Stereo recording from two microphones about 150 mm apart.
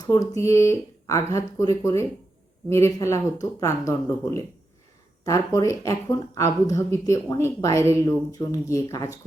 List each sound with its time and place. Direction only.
0.0 s speech: 20° left (ahead or behind)